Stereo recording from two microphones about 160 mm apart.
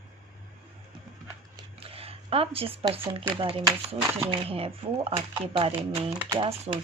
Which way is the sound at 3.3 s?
35° right (ahead or behind).